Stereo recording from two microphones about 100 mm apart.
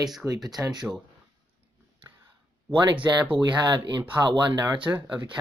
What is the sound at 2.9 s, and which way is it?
Speech, 55° right (ahead or behind).